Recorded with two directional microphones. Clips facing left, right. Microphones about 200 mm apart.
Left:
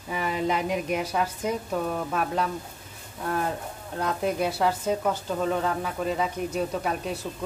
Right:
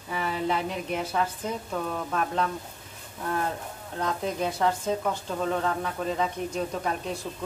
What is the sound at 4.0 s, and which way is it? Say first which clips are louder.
Speech: left 2 dB; 10° left (ahead or behind).